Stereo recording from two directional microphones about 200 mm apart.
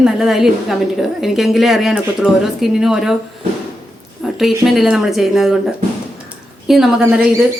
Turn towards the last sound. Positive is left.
turn(degrees=0)  # may be behind; listen again after turning